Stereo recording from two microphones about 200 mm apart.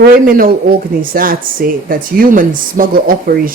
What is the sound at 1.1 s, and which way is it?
Speech, 45° right (ahead or behind).